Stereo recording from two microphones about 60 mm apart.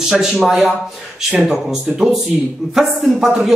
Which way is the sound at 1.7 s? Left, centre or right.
Centre.